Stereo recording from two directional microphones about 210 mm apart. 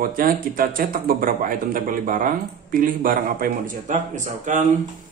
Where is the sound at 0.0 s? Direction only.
40° right (ahead or behind).